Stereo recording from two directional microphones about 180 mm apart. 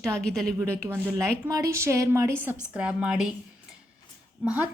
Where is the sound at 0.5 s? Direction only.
10° right (ahead or behind).